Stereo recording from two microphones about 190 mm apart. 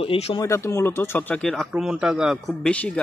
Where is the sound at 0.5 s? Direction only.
15° left (ahead or behind).